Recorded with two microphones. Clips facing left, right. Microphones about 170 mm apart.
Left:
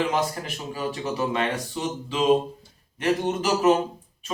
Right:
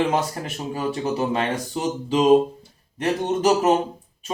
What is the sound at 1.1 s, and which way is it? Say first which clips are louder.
A man's voice: even; 30° right (ahead or behind).